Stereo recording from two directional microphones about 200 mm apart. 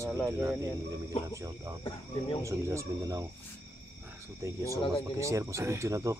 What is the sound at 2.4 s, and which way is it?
Speech, 15° right (ahead or behind).